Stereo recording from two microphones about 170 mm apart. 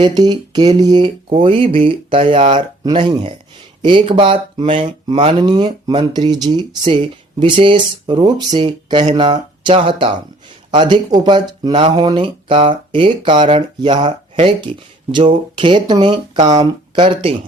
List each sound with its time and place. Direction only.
0.0 s speech: 25° right (ahead or behind)